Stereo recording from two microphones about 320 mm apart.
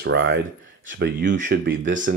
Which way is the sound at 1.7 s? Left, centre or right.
Right.